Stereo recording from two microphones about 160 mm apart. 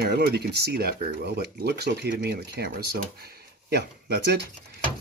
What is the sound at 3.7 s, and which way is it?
Speech, 90° right.